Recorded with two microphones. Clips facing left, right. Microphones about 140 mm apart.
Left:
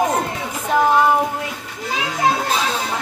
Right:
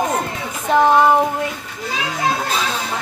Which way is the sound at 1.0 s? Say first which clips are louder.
Right 2 dB; 25° right (ahead or behind).